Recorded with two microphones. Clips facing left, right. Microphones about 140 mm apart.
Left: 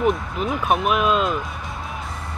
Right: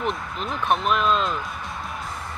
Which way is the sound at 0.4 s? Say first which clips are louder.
Left 3 dB; 5° left (ahead or behind).